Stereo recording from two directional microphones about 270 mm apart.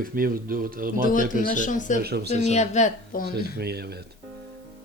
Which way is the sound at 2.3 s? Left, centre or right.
Left.